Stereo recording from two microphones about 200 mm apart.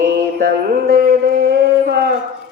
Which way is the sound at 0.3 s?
50° right (ahead or behind).